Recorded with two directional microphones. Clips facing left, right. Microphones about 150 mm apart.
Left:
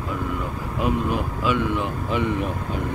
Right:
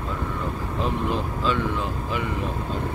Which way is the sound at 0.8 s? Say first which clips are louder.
Left 3 dB; 15° left (ahead or behind).